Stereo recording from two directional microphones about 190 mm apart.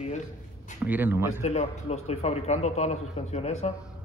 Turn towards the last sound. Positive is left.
turn(degrees=35)  # may be behind; listen again after turning